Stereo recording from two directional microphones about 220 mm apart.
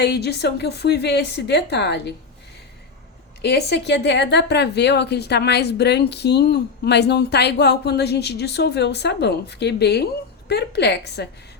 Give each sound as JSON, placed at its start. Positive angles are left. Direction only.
{"t": 0.0, "sound": "speech", "side_deg": 50}
{"t": 3.4, "sound": "speech", "side_deg": 50}